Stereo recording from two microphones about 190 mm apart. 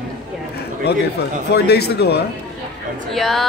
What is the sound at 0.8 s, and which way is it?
Speech, 60° left (ahead or behind).